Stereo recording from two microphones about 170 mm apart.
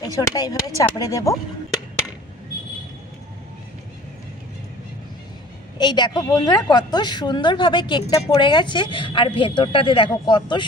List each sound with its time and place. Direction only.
0.0 s a woman's voice: 25° left (ahead or behind)
5.8 s a woman's voice: 25° left (ahead or behind)